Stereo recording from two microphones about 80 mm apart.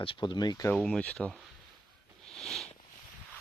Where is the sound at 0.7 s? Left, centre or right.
Centre.